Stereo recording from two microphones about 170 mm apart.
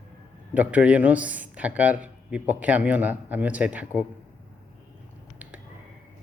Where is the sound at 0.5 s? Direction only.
10° right (ahead or behind).